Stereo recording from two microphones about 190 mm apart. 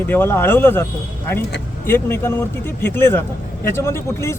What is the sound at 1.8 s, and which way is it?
A man's voice, 10° left (ahead or behind).